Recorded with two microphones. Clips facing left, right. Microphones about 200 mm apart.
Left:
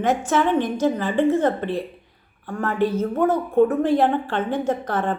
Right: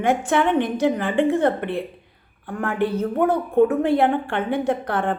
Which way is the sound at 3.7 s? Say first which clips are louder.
Even; 60° right (ahead or behind).